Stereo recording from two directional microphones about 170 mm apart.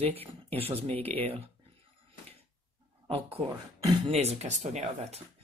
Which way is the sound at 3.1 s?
35° right (ahead or behind).